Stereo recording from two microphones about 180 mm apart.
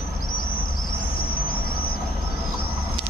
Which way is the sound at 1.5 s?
55° left (ahead or behind).